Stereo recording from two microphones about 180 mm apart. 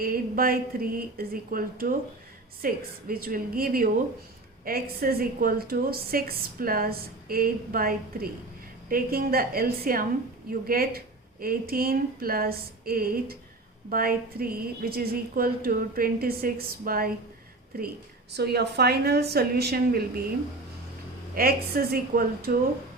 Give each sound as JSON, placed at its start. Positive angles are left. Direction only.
{"t": 0.0, "sound": "a woman's voice", "side_deg": -55}
{"t": 21.3, "sound": "a woman's voice", "side_deg": -55}